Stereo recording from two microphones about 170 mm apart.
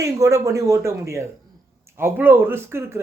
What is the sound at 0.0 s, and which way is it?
Speech, 20° right (ahead or behind).